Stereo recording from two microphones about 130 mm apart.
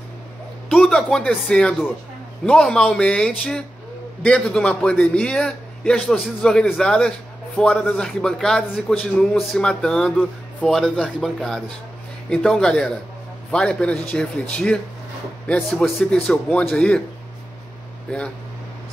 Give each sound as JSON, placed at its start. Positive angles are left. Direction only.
{"t": 0.7, "sound": "a man's voice", "side_deg": 5}
{"t": 18.1, "sound": "speech", "side_deg": 10}